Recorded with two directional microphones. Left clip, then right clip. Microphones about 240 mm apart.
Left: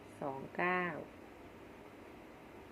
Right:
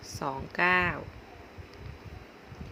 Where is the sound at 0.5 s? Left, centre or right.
Right.